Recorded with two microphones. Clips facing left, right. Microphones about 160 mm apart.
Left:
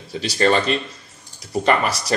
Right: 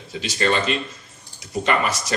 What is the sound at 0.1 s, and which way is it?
Speech, 40° left (ahead or behind).